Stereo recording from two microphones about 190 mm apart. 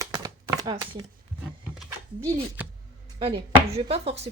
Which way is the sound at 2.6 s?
10° right (ahead or behind).